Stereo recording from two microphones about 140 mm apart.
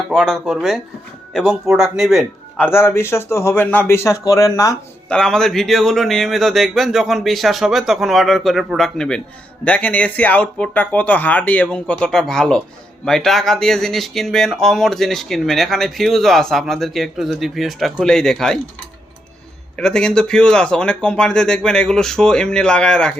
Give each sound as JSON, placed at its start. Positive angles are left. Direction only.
{"t": 0.1, "sound": "speech", "side_deg": 5}
{"t": 2.6, "sound": "a man's voice", "side_deg": 15}
{"t": 5.0, "sound": "speech", "side_deg": 5}
{"t": 19.7, "sound": "speech", "side_deg": 5}